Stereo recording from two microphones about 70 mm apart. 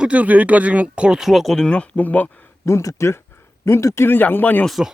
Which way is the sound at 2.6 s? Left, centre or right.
Left.